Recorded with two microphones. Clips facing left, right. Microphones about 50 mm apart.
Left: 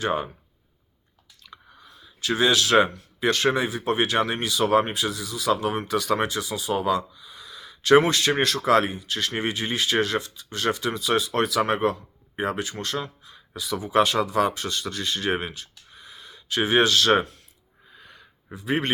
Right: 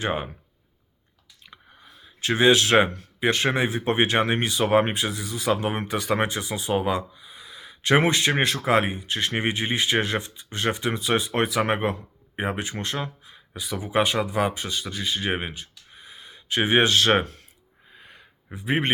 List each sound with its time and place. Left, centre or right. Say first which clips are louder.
0.0 s speech: left 1 dB; right
1.5 s clicking: left 2 dB; right
3.2 s speech: even; right
17.9 s a sound: even; right
18.5 s speech: right 1 dB; right